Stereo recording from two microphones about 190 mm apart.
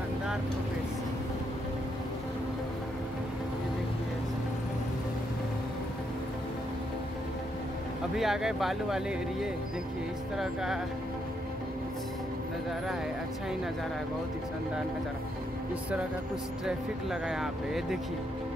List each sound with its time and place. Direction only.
8.2 s speech: centre (ahead or behind)
16.6 s speech: centre (ahead or behind)